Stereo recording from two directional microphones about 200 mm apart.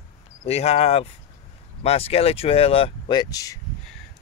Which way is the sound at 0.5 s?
30° left (ahead or behind).